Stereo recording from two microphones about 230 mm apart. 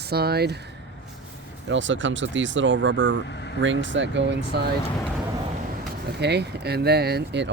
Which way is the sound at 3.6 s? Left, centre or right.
Right.